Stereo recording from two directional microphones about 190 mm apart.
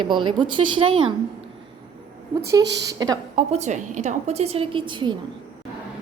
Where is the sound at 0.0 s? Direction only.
25° right (ahead or behind).